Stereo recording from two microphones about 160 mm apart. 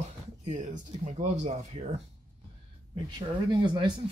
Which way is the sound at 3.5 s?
30° right (ahead or behind).